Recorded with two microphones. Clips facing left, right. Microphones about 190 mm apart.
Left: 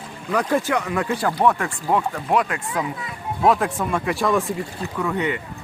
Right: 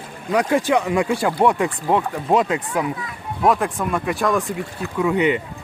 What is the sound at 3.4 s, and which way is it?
Speech, centre (ahead or behind).